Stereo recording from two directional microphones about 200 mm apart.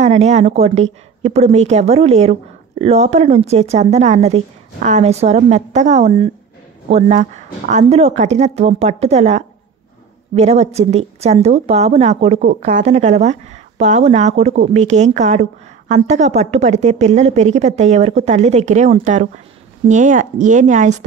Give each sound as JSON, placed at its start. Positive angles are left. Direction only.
{"t": 0.0, "sound": "a woman's voice", "side_deg": -35}